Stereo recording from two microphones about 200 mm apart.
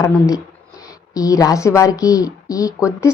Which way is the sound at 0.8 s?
15° left (ahead or behind).